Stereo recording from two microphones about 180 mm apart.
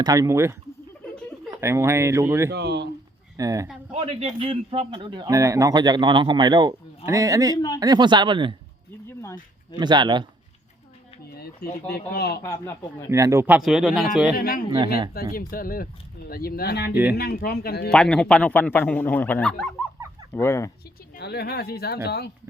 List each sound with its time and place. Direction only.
0.0 s speech: 20° right (ahead or behind)
1.6 s speech: 15° right (ahead or behind)
2.5 s speech: 70° right (ahead or behind)
3.3 s speech: 20° right (ahead or behind)
3.9 s speech: 35° right (ahead or behind)
9.7 s speech: 25° right (ahead or behind)
11.3 s speech: 60° left (ahead or behind)
12.4 s speech: 15° left (ahead or behind)
13.1 s speech: 15° right (ahead or behind)
14.3 s speech: 55° left (ahead or behind)
16.9 s speech: 10° right (ahead or behind)
17.2 s speech: 60° left (ahead or behind)
17.8 s speech: 5° left (ahead or behind)
21.2 s speech: 65° left (ahead or behind)